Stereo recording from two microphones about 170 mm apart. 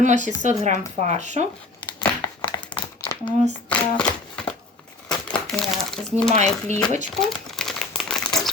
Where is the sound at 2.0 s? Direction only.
25° left (ahead or behind).